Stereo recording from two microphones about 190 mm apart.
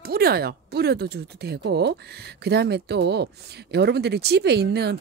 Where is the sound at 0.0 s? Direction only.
55° right (ahead or behind).